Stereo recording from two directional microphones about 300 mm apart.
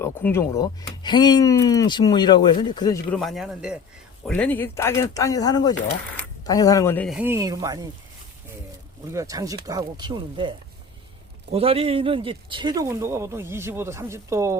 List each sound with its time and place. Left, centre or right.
0.0 s speech: centre
9.1 s speech: centre
11.5 s speech: centre